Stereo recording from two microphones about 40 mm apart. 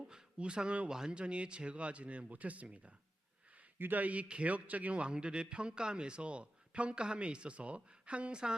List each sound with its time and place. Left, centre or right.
0.0 s a sound: right
0.9 s speech: centre
3.8 s speech: right
4.0 s a man's voice: right